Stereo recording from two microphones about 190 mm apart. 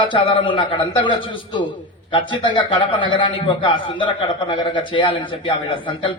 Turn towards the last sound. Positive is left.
turn(degrees=25)  # may be behind; listen again after turning